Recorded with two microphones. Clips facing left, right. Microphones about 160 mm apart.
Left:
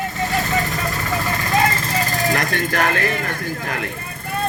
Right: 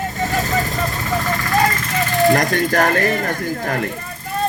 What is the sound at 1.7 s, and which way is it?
Vehicle, 35° left (ahead or behind).